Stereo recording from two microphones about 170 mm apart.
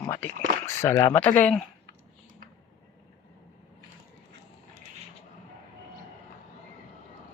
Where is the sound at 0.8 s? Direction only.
15° left (ahead or behind).